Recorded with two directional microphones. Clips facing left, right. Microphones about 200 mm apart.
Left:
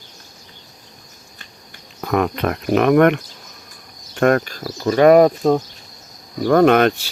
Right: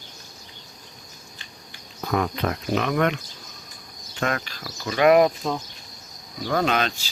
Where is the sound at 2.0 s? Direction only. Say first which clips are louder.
Left 5 dB; 60° left (ahead or behind).